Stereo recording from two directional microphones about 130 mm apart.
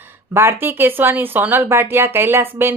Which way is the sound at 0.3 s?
15° right (ahead or behind).